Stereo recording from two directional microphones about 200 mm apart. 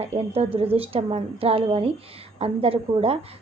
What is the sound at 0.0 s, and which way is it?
A woman's voice, 30° right (ahead or behind).